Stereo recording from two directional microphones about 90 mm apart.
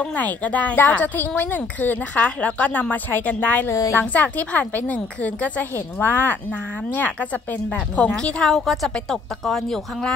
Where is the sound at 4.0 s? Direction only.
15° left (ahead or behind).